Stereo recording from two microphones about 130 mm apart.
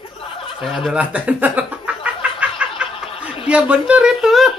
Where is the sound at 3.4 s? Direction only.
10° right (ahead or behind).